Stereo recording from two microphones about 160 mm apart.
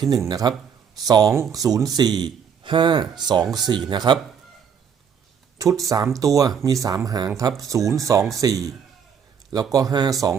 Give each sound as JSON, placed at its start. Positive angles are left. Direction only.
{"t": 0.1, "sound": "speech", "side_deg": -25}
{"t": 5.5, "sound": "speech", "side_deg": -20}
{"t": 9.7, "sound": "speech", "side_deg": -25}